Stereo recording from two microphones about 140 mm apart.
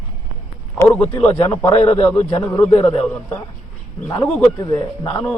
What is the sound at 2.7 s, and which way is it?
Speech, 40° left (ahead or behind).